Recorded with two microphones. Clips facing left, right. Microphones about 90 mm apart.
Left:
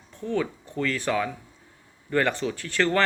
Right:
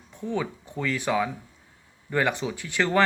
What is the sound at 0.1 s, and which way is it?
Speech, 15° right (ahead or behind).